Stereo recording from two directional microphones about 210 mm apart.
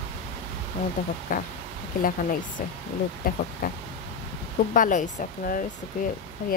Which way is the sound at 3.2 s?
45° left (ahead or behind).